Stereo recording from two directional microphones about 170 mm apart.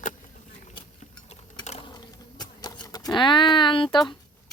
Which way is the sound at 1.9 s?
25° left (ahead or behind).